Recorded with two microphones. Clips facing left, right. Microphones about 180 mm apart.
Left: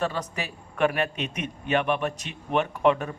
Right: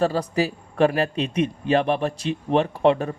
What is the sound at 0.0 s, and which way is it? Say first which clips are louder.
A man's voice: right 8 dB; 35° right (ahead or behind).